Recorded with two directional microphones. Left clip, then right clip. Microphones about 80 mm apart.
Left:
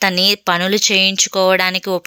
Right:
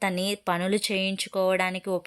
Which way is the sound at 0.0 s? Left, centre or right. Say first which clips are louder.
Left 13 dB; centre.